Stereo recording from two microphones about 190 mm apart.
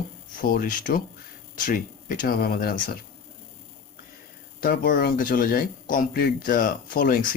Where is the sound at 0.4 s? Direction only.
45° left (ahead or behind).